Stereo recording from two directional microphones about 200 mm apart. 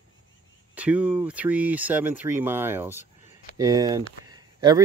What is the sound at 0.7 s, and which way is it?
Speech, 5° right (ahead or behind).